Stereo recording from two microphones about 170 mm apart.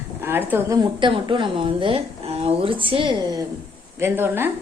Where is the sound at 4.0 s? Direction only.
15° right (ahead or behind).